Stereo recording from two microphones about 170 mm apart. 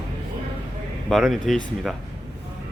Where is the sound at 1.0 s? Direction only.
Centre (ahead or behind).